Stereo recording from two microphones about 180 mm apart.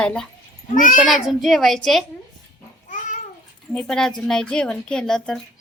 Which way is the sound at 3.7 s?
5° left (ahead or behind).